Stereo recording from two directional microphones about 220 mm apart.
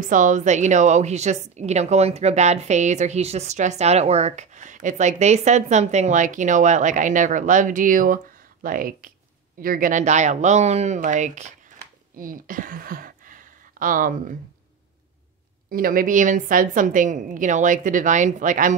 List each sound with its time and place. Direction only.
0.0 s a woman's voice: 35° right (ahead or behind)
15.7 s a woman's voice: 40° right (ahead or behind)